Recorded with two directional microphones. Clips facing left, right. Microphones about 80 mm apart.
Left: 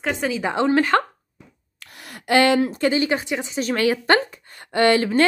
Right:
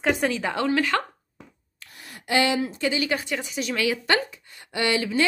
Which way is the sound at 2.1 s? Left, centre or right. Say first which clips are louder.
Left 6 dB; left.